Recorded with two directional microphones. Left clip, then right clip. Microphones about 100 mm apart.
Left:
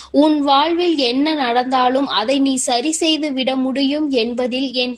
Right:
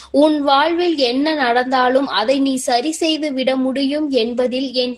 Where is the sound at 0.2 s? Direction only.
30° left (ahead or behind).